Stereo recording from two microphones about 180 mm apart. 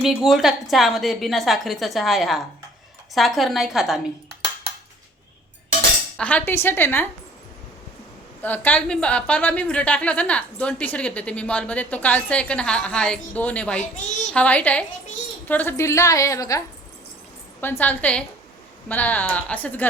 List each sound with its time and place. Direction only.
0.0 s a woman's voice: centre (ahead or behind)
6.1 s a woman's voice: 5° left (ahead or behind)
8.4 s a woman's voice: 10° left (ahead or behind)